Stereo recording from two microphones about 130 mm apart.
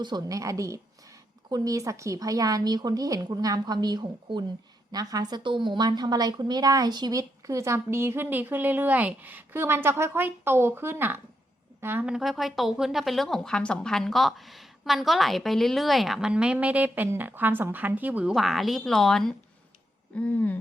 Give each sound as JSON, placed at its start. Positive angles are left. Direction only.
{"t": 0.0, "sound": "a woman's voice", "side_deg": -30}
{"t": 12.1, "sound": "speech", "side_deg": 0}
{"t": 18.3, "sound": "speech", "side_deg": 0}
{"t": 20.1, "sound": "a sound", "side_deg": 10}